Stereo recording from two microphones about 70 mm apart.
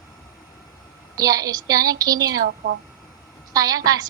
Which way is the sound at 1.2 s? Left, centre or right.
Right.